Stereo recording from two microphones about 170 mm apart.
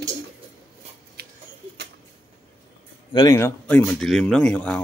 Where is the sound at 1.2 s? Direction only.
70° right (ahead or behind).